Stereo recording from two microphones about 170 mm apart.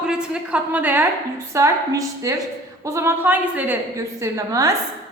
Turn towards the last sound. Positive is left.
turn(degrees=-20)  # may be behind; listen again after turning